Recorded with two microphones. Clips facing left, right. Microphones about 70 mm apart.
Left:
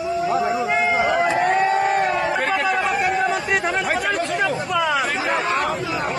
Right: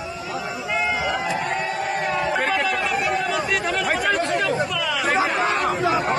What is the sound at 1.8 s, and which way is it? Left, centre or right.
Crowd, left.